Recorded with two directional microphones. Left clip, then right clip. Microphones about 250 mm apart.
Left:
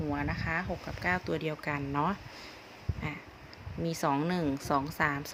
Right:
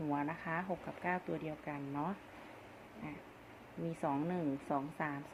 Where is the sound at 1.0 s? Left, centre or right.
Left.